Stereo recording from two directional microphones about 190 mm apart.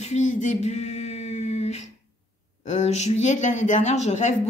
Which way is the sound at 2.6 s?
35° left (ahead or behind).